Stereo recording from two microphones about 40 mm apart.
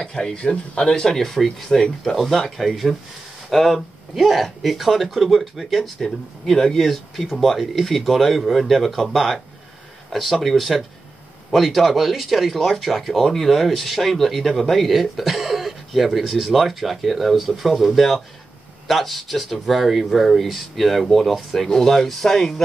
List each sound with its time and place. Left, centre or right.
0.0 s speech: centre
0.8 s speech: centre
21.6 s speech: centre